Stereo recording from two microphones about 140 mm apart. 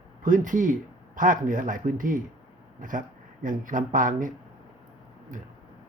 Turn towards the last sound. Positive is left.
turn(degrees=-70)  # may be behind; listen again after turning